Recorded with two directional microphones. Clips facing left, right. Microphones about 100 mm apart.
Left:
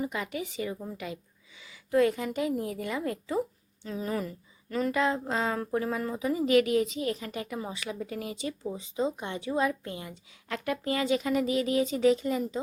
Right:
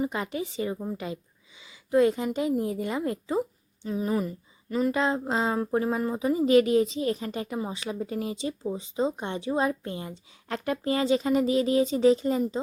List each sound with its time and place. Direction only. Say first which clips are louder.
0.0 s a woman's voice: right 3 dB; 30° right (ahead or behind); by 4.9 s 15° right (ahead or behind)
4.9 s a woman's voice: even; 25° right (ahead or behind)